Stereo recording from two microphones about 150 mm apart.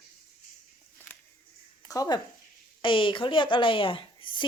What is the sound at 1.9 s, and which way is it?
A woman's voice, 25° left (ahead or behind).